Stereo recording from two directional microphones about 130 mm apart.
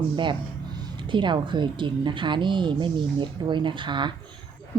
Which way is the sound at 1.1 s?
35° right (ahead or behind).